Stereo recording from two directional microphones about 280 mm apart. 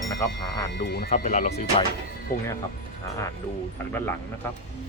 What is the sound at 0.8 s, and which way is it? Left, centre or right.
Speech, left.